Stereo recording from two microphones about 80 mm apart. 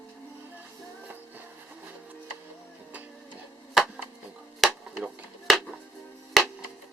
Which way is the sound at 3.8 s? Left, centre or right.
Centre.